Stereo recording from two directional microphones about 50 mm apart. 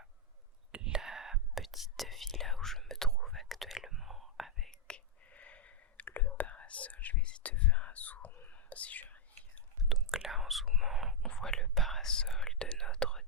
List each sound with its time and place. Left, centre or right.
0.9 s whispering: centre
4.7 s whispering: centre
9.9 s whispering: centre
11.3 s whispering: centre